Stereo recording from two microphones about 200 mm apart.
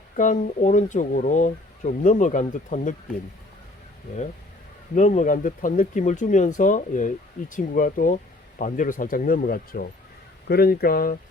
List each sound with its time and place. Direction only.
0.2 s speech: 40° left (ahead or behind)
4.9 s speech: 40° left (ahead or behind)